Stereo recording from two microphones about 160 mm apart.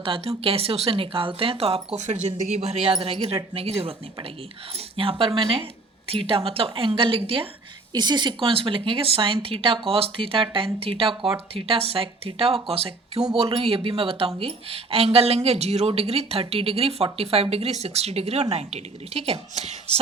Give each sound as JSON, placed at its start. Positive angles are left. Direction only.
{"t": 0.0, "sound": "speech", "side_deg": -35}